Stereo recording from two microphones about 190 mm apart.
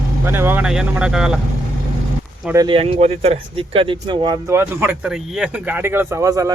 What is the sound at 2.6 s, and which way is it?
Speech, 30° right (ahead or behind).